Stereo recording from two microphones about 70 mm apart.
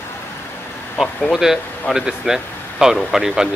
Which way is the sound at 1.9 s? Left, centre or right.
Centre.